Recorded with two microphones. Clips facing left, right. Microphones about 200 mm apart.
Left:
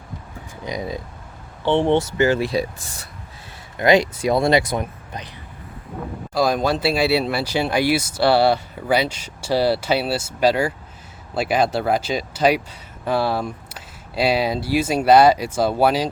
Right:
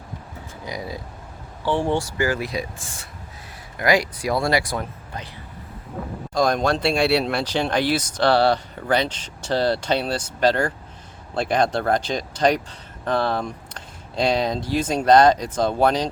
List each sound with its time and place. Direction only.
0.6 s speech: 20° left (ahead or behind); by 3.1 s 40° left (ahead or behind)
3.8 s speech: 25° left (ahead or behind)
6.3 s speech: 5° left (ahead or behind)